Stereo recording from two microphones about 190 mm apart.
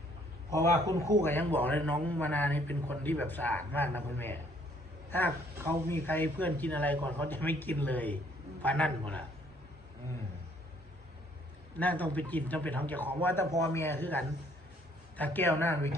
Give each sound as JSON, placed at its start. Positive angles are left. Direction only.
{"t": 0.9, "sound": "speech", "side_deg": -20}
{"t": 1.2, "sound": "a man's voice", "side_deg": 10}
{"t": 11.8, "sound": "a man's voice", "side_deg": 10}